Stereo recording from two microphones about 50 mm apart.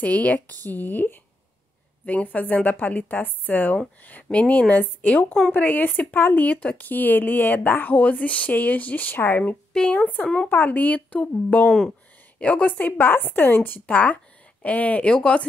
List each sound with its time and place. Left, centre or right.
0.0 s speech: left
4.3 s speech: left
12.8 s speech: left; by 15.4 s centre